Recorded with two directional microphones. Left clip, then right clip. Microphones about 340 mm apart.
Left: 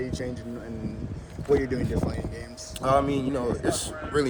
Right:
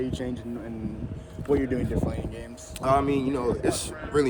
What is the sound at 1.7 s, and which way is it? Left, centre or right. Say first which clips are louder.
Speech: even; right.